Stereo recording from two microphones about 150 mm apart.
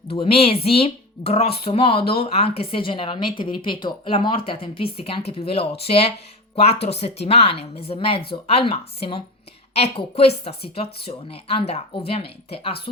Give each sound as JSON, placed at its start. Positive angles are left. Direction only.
{"t": 0.1, "sound": "a woman's voice", "side_deg": 40}